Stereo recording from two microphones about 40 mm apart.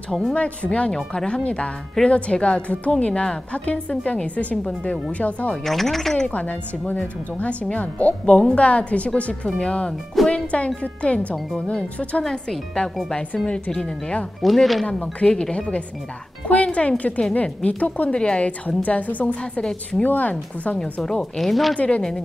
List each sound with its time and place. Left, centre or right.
0.3 s a woman's voice: left
5.6 s speech: centre
6.2 s a woman's voice: left
12.3 s a woman's voice: centre
14.4 s a woman's voice: centre
14.9 s a woman's voice: left
16.4 s a woman's voice: left
18.1 s a woman's voice: left
18.8 s a woman's voice: left
19.6 s speech: centre
20.0 s a woman's voice: left
20.8 s speech: centre
21.2 s a woman's voice: centre
21.7 s a woman's voice: left